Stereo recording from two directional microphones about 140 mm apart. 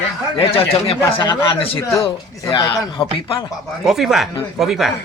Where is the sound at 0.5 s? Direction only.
45° left (ahead or behind).